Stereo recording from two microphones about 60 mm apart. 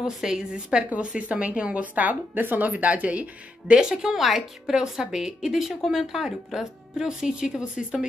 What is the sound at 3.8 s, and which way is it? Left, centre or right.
Speech, centre.